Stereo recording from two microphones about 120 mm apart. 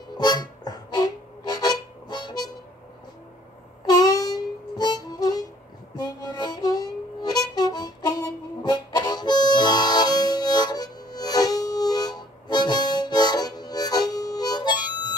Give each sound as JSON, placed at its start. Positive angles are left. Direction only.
{"t": 0.2, "sound": "harmonica", "side_deg": 35}
{"t": 3.8, "sound": "harmonica", "side_deg": 30}